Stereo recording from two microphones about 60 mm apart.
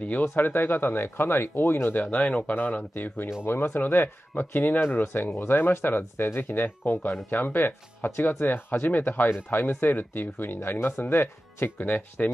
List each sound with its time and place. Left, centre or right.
0.0 s speech: left
2.0 s speech: left
2.5 s speech: left
11.8 s speech: left